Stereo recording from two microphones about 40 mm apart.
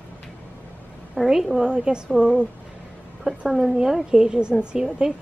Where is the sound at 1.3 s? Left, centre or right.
Centre.